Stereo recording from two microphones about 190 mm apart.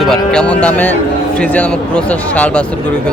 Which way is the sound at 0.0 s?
5° left (ahead or behind).